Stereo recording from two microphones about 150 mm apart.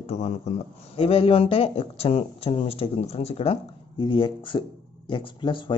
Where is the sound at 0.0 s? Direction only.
50° left (ahead or behind).